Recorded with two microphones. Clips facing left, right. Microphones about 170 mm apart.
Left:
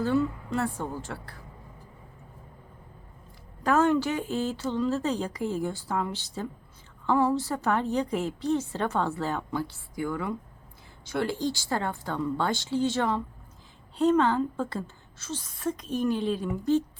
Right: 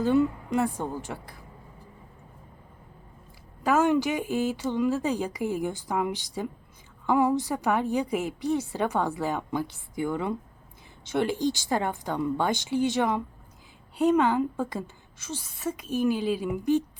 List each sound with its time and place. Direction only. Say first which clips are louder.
0.0 s a woman's voice: right 3 dB; 15° right (ahead or behind)
3.6 s a woman's voice: even; 10° right (ahead or behind)